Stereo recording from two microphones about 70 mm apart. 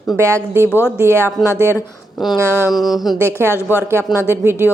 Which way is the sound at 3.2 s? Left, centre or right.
Right.